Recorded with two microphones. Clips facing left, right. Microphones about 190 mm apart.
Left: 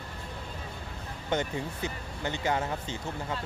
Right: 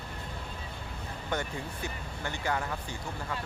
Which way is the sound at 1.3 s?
20° left (ahead or behind).